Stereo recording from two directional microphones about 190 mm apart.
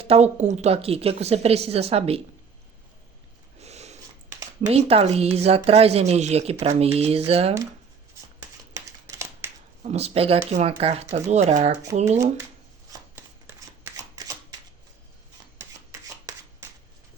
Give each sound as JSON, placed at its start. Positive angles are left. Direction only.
{"t": 0.0, "sound": "speech", "side_deg": -35}
{"t": 3.6, "sound": "snort", "side_deg": -35}
{"t": 4.6, "sound": "speech", "side_deg": -35}
{"t": 9.0, "sound": "a sound", "side_deg": -15}
{"t": 9.8, "sound": "speech", "side_deg": -35}
{"t": 15.5, "sound": "shuffling cards", "side_deg": -15}